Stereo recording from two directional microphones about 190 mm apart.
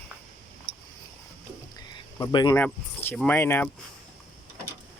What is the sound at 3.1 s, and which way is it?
Speech, 10° left (ahead or behind).